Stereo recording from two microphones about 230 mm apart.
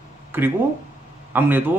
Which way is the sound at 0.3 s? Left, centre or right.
Centre.